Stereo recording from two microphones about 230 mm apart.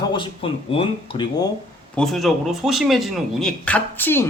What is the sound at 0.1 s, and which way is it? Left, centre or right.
Speech, left.